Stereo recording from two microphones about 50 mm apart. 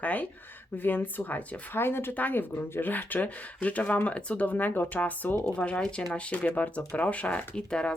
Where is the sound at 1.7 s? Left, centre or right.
Left.